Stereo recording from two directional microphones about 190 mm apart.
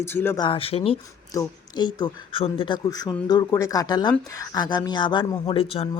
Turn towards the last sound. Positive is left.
turn(degrees=30)  # may be behind; listen again after turning